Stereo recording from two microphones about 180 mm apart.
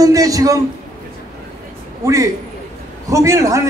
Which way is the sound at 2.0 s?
15° right (ahead or behind).